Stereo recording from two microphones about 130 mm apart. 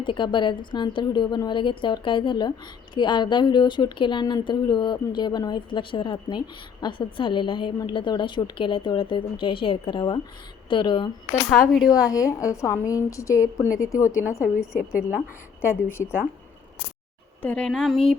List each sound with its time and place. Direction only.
0.0 s a woman's voice: 40° left (ahead or behind)
14.5 s a woman's voice: 10° right (ahead or behind)
15.9 s a woman's voice: 20° left (ahead or behind)
17.4 s speech: 10° left (ahead or behind)